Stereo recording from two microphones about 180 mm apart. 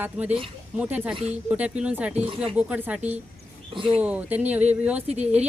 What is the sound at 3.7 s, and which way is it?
Speech, 30° right (ahead or behind).